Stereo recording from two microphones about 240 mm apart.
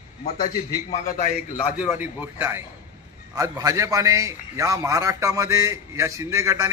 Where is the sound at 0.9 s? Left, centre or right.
Left.